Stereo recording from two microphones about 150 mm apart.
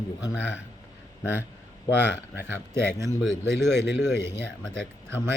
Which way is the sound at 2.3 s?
15° right (ahead or behind).